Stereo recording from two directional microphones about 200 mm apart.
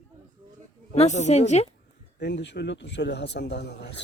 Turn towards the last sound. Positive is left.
turn(degrees=55)  # may be behind; listen again after turning